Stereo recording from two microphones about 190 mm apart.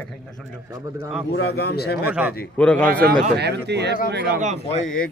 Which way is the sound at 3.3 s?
60° right (ahead or behind).